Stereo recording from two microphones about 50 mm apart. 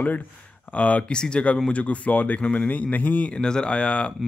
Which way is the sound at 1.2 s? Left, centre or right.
Centre.